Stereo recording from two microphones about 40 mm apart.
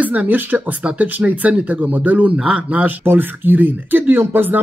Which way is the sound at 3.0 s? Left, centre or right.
Right.